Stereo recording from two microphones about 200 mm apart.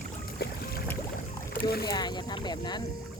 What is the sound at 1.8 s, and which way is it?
Speech, 20° left (ahead or behind).